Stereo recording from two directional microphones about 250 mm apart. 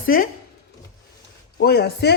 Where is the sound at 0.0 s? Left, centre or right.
Left.